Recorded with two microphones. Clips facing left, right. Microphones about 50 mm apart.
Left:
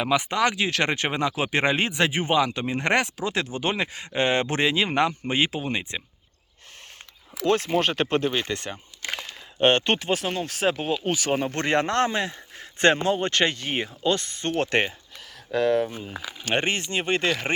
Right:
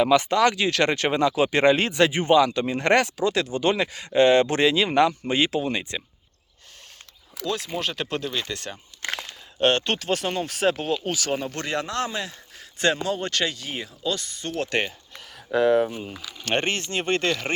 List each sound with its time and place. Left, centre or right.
0.0 s speech: centre
7.4 s speech: left
9.1 s a sound: left
10.1 s speech: centre
10.7 s speech: centre
11.0 s speech: left
15.5 s speech: right
16.4 s speech: centre